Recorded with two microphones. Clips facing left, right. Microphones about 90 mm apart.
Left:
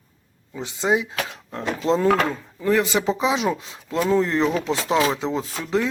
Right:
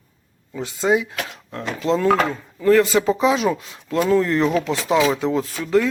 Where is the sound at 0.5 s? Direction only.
20° left (ahead or behind).